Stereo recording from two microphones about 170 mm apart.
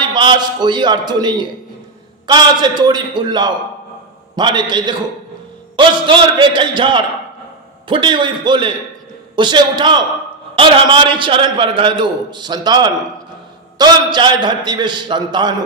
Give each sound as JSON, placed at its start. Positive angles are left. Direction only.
{"t": 0.1, "sound": "a man's voice", "side_deg": -25}